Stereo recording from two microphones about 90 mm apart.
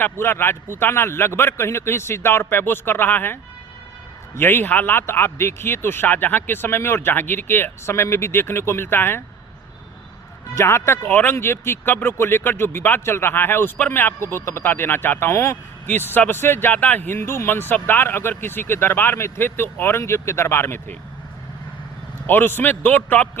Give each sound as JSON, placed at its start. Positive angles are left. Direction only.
{"t": 0.0, "sound": "speech", "side_deg": 25}
{"t": 4.4, "sound": "speech", "side_deg": 25}
{"t": 10.5, "sound": "speech", "side_deg": 30}
{"t": 22.3, "sound": "speech", "side_deg": 20}